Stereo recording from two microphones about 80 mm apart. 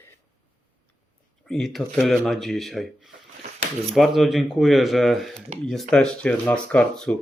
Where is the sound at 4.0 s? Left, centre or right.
Centre.